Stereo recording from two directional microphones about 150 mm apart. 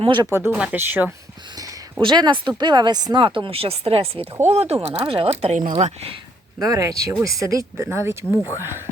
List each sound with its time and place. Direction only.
0.0 s speech: 30° right (ahead or behind)
0.3 s speech: 20° right (ahead or behind)
1.5 s a sound: 30° right (ahead or behind)
2.6 s speech: 30° right (ahead or behind); by 5.7 s 50° right (ahead or behind)
5.7 s speech: 40° right (ahead or behind)
6.6 s speech: 25° right (ahead or behind)